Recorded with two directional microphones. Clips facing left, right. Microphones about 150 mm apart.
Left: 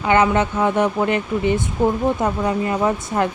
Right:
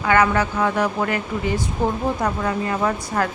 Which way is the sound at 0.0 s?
25° left (ahead or behind).